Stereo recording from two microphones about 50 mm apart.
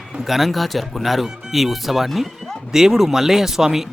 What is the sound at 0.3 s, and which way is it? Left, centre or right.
Speech, centre.